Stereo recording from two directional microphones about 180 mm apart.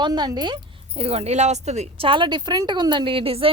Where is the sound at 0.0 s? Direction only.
25° right (ahead or behind).